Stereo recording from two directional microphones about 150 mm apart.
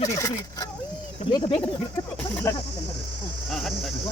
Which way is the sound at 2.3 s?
20° left (ahead or behind).